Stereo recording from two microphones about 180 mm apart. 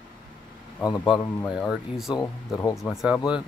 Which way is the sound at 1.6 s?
Centre (ahead or behind).